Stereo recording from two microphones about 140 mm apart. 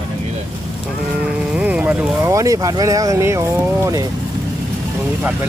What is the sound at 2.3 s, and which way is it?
Speech, 25° right (ahead or behind).